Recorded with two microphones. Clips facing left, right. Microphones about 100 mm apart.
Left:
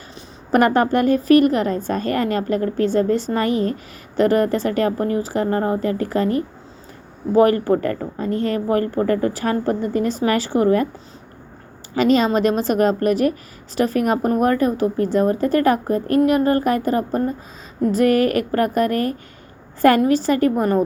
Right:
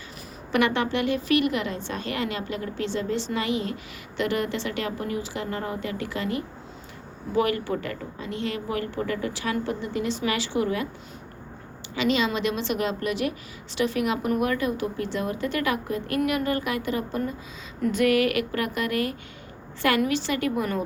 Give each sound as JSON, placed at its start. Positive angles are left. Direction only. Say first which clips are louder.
{"t": 0.5, "sound": "a woman's voice", "louder": "left 8 dB", "side_deg": 45}
{"t": 11.9, "sound": "a woman's voice", "louder": "left 8 dB", "side_deg": 45}